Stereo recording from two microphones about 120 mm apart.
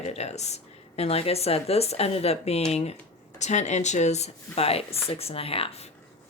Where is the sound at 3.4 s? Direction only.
75° left (ahead or behind); by 5.8 s 55° left (ahead or behind).